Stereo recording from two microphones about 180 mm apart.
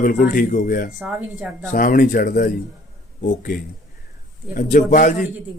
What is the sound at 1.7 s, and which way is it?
Speech, 50° left (ahead or behind).